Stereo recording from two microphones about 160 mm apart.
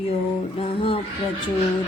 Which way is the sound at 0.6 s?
35° left (ahead or behind).